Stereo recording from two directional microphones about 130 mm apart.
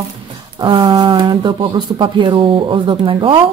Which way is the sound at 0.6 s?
35° right (ahead or behind).